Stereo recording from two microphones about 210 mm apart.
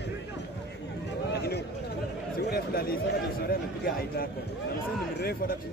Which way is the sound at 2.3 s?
50° left (ahead or behind).